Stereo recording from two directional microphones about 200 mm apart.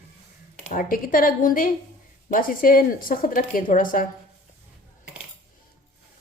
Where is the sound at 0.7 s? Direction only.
40° left (ahead or behind).